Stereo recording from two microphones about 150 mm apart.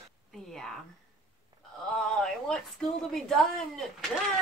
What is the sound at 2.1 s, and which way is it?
Speech, 5° left (ahead or behind).